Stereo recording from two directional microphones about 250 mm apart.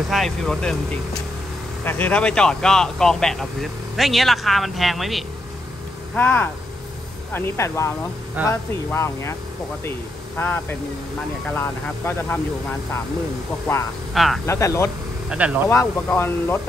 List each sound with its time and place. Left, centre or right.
0.1 s speech: centre
1.9 s speech: centre
14.1 s speech: centre
14.4 s speech: centre
15.2 s speech: centre
15.7 s speech: centre